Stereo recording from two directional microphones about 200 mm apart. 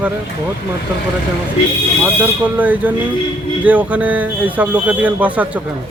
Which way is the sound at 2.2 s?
10° right (ahead or behind).